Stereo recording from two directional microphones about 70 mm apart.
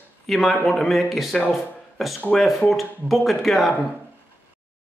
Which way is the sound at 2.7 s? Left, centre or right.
Centre.